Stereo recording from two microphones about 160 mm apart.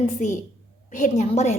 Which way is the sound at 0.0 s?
50° left (ahead or behind).